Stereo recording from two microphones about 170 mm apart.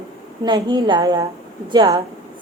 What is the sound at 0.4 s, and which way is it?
A woman's voice, 25° right (ahead or behind).